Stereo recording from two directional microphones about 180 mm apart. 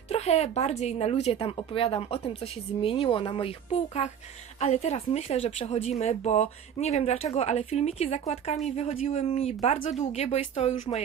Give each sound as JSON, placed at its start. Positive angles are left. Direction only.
{"t": 0.1, "sound": "speech", "side_deg": 35}